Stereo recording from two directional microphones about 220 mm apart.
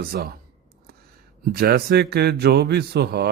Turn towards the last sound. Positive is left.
turn(degrees=-45)  # may be behind; listen again after turning